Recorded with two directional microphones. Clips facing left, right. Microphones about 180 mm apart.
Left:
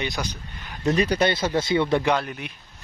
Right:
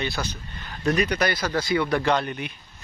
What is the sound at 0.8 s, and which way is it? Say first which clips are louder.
Speech: left 2 dB; 25° left (ahead or behind).